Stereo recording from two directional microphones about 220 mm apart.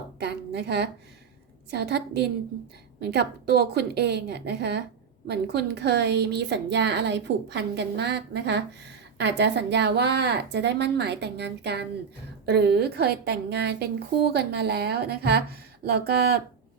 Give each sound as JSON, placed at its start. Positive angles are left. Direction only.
{"t": 0.2, "sound": "a woman's voice", "side_deg": -50}